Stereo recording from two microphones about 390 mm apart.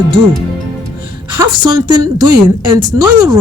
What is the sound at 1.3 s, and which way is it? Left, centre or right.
A woman's voice, centre.